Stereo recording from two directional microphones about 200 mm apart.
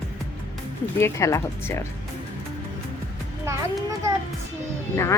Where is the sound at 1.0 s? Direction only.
15° left (ahead or behind).